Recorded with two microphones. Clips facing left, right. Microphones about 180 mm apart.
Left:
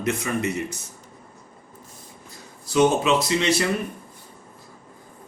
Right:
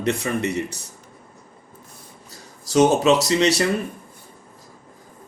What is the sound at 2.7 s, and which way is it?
Speech, 40° right (ahead or behind).